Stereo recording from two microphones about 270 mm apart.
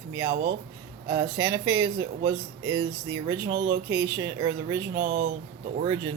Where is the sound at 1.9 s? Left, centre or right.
Right.